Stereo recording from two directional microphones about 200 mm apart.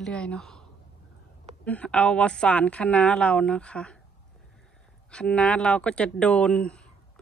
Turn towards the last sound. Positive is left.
turn(degrees=5)  # may be behind; listen again after turning